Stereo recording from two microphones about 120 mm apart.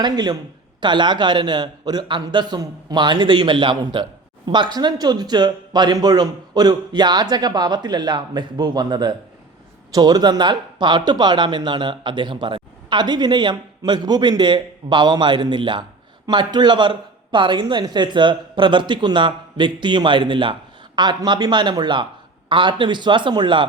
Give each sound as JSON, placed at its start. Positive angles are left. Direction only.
{"t": 0.0, "sound": "speech", "side_deg": -35}